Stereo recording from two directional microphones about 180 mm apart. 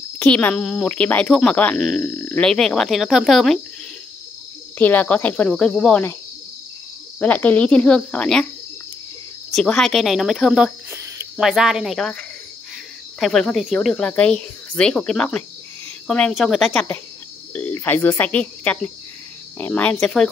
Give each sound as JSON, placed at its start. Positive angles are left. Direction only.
{"t": 0.2, "sound": "speech", "side_deg": 10}
{"t": 4.7, "sound": "speech", "side_deg": 10}
{"t": 7.2, "sound": "speech", "side_deg": 10}
{"t": 9.5, "sound": "speech", "side_deg": 5}
{"t": 10.9, "sound": "cricket", "side_deg": -15}
{"t": 11.3, "sound": "speech", "side_deg": 0}